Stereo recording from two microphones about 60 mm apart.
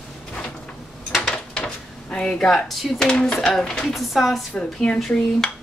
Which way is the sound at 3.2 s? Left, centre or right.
Centre.